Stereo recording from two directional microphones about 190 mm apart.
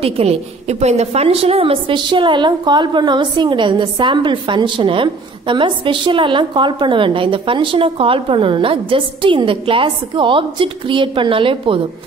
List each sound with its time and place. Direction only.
0.0 s a woman's voice: 30° right (ahead or behind)